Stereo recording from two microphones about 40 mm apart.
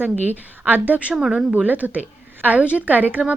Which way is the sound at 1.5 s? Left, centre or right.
Right.